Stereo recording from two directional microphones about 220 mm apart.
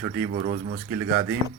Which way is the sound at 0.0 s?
45° right (ahead or behind).